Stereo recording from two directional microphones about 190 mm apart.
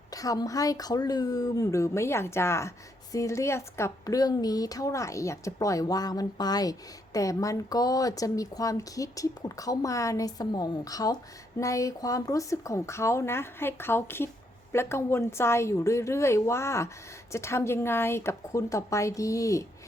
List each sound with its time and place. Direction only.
0.1 s a woman's voice: 20° left (ahead or behind)